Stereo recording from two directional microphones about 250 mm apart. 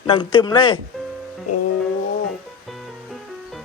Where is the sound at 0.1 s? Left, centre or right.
Centre.